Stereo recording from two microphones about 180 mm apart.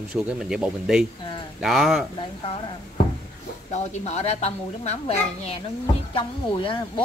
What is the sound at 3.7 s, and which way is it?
A woman's voice, 35° left (ahead or behind).